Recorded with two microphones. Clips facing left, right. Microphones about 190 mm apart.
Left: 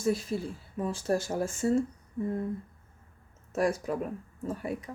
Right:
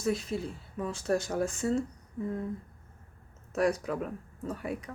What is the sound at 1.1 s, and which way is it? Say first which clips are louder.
Speech: even; 35° left (ahead or behind).